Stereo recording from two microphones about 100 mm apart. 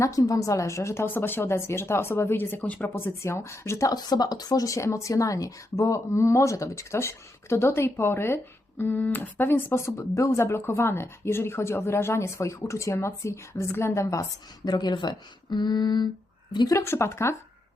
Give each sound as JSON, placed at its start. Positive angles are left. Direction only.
{"t": 0.0, "sound": "speech", "side_deg": 35}
{"t": 2.9, "sound": "speech", "side_deg": 25}
{"t": 3.9, "sound": "speech", "side_deg": 40}
{"t": 16.8, "sound": "speech", "side_deg": 25}